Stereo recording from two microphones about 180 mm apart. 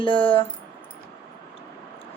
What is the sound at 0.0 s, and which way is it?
Speech, 30° left (ahead or behind).